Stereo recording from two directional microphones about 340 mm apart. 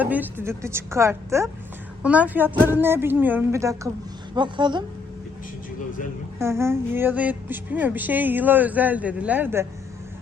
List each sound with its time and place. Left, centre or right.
0.0 s a woman's voice: centre
6.4 s a woman's voice: centre